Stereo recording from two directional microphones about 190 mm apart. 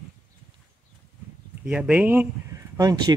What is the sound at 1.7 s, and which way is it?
Speech, 5° right (ahead or behind).